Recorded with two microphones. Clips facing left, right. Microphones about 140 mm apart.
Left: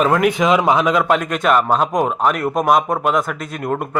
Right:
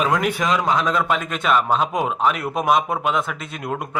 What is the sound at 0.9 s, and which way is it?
Speech, 5° left (ahead or behind).